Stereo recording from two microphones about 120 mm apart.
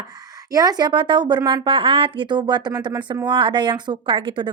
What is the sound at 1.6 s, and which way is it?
A woman's voice, 45° right (ahead or behind).